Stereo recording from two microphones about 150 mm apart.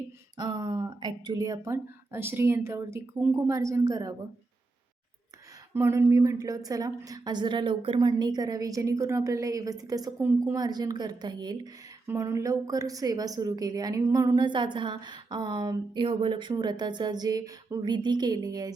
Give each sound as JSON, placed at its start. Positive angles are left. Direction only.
{"t": 0.3, "sound": "a woman's voice", "side_deg": -25}
{"t": 5.7, "sound": "a woman's voice", "side_deg": -15}